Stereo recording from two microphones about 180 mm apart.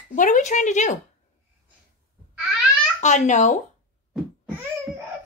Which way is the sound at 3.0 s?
40° left (ahead or behind).